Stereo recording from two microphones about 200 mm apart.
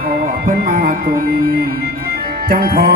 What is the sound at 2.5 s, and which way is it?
Speech, 55° right (ahead or behind).